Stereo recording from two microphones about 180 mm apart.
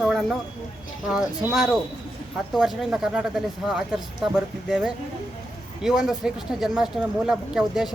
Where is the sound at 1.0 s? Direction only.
5° right (ahead or behind).